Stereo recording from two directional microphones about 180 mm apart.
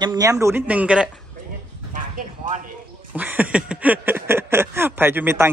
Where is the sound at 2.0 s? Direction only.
45° right (ahead or behind).